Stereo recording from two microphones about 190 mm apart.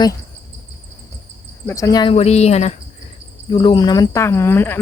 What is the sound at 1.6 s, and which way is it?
Speech, 15° left (ahead or behind).